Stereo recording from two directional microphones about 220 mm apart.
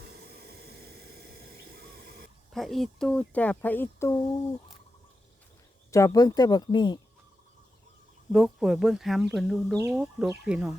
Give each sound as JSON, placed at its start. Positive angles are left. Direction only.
{"t": 0.1, "sound": "a sound", "side_deg": -45}
{"t": 2.5, "sound": "speech", "side_deg": 0}
{"t": 5.9, "sound": "speech", "side_deg": 15}
{"t": 8.3, "sound": "speech", "side_deg": 0}